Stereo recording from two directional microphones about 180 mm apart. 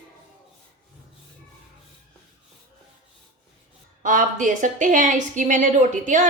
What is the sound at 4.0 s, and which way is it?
A woman's voice, 45° right (ahead or behind).